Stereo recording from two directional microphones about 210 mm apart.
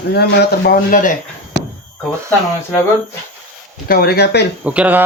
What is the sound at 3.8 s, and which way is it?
Speech, 45° left (ahead or behind).